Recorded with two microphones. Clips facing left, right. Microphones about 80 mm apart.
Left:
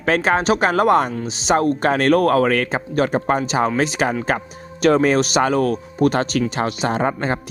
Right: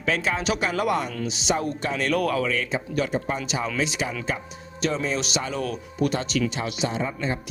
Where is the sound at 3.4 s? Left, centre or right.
Left.